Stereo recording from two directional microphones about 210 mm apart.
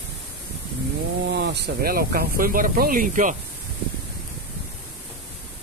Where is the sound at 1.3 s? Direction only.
55° right (ahead or behind); by 3.3 s 40° right (ahead or behind).